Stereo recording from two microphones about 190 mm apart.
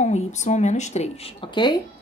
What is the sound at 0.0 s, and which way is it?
A woman's voice, 35° left (ahead or behind).